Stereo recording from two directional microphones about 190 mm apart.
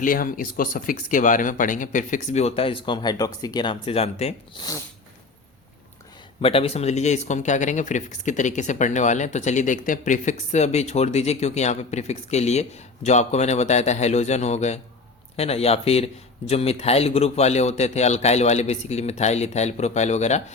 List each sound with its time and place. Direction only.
0.0 s speech: 45° left (ahead or behind)
6.4 s speech: 30° left (ahead or behind)